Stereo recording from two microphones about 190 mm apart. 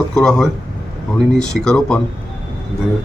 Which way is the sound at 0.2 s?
5° left (ahead or behind).